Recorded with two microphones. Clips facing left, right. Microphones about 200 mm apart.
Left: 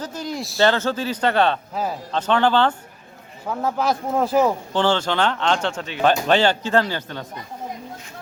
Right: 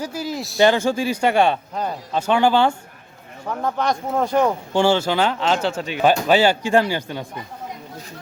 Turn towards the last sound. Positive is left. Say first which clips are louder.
# right 2 dB
turn(degrees=-10)  # may be behind; listen again after turning